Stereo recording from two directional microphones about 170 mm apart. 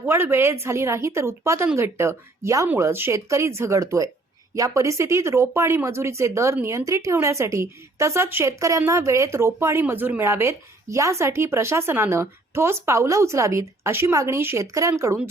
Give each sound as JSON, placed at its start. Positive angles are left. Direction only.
{"t": 0.0, "sound": "speech", "side_deg": -15}